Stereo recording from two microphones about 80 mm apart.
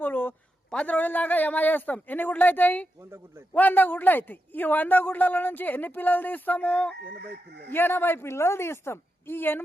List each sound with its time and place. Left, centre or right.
0.0 s a sound: left
0.7 s speech: centre
3.0 s a man's voice: right
3.5 s speech: left
7.7 s speech: left